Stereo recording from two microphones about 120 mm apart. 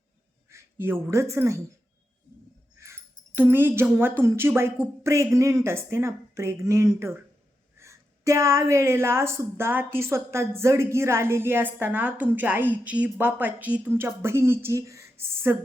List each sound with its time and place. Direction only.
0.4 s a sound: 20° right (ahead or behind)
1.1 s a woman's voice: 25° right (ahead or behind)
2.7 s a woman's voice: 20° right (ahead or behind)